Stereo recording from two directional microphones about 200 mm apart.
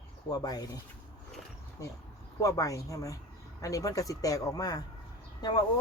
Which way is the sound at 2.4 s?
15° left (ahead or behind).